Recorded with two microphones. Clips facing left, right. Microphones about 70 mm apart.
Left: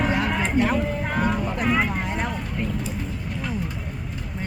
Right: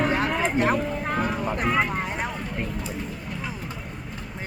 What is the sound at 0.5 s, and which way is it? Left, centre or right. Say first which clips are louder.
Speech: left 2 dB; right.